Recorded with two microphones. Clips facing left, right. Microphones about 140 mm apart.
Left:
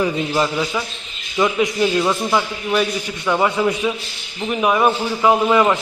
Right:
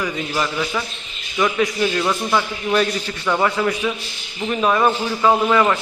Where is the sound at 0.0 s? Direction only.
25° left (ahead or behind).